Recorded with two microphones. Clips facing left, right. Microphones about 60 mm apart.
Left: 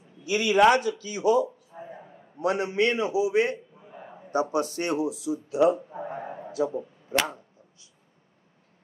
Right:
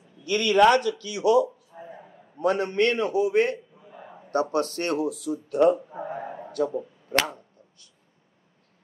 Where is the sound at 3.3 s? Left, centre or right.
Right.